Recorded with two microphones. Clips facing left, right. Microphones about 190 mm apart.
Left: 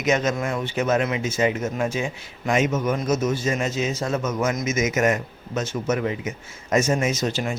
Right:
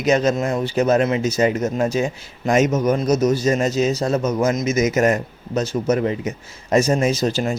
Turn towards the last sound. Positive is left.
turn(degrees=-35)  # may be behind; listen again after turning